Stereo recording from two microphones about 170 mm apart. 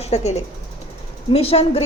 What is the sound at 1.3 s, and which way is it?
Speech, 35° left (ahead or behind).